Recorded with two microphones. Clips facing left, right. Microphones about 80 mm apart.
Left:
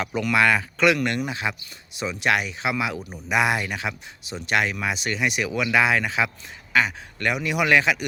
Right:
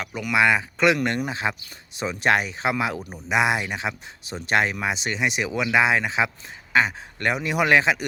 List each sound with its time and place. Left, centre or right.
0.0 s speech: centre
0.3 s a man's voice: centre; by 3.0 s right
3.2 s a man's voice: right